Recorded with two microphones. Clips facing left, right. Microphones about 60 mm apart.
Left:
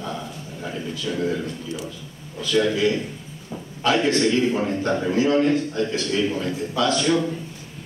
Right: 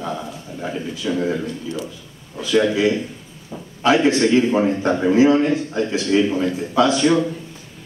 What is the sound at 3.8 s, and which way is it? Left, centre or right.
A man's voice, centre.